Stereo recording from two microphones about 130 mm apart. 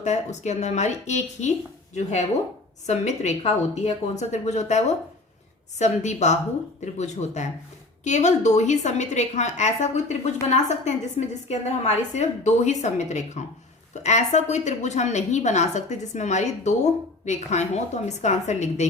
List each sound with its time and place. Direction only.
0.0 s a woman's voice: 65° left (ahead or behind)
5.8 s a woman's voice: 60° left (ahead or behind)